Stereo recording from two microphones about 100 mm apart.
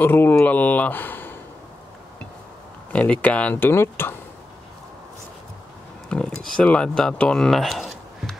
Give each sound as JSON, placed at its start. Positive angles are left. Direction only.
{"t": 0.0, "sound": "speech", "side_deg": 20}
{"t": 2.9, "sound": "speech", "side_deg": 10}
{"t": 6.0, "sound": "speech", "side_deg": 10}